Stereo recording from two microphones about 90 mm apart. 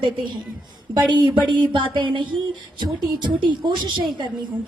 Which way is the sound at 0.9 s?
55° right (ahead or behind).